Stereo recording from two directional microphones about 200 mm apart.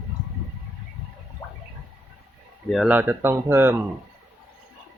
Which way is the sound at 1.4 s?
20° left (ahead or behind).